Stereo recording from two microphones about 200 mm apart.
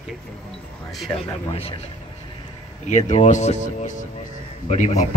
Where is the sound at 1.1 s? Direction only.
10° left (ahead or behind).